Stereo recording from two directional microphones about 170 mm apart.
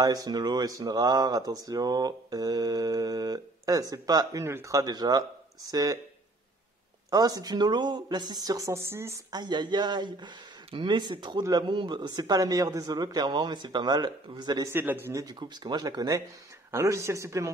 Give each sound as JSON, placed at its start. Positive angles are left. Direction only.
{"t": 0.0, "sound": "speech", "side_deg": -20}
{"t": 7.1, "sound": "speech", "side_deg": -20}
{"t": 14.7, "sound": "speech", "side_deg": -10}